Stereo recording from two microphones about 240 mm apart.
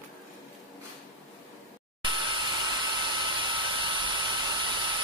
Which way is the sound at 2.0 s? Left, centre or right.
Centre.